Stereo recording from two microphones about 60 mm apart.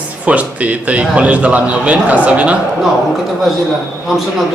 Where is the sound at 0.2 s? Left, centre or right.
Right.